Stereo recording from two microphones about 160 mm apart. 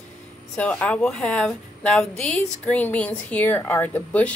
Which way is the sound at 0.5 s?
10° left (ahead or behind).